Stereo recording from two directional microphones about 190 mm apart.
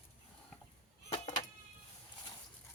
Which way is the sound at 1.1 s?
25° left (ahead or behind).